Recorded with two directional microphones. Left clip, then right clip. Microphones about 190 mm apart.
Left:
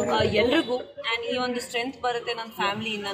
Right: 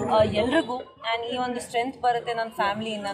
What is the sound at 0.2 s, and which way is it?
Speech, 10° right (ahead or behind).